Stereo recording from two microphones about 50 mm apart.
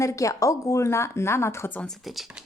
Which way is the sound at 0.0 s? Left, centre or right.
Left.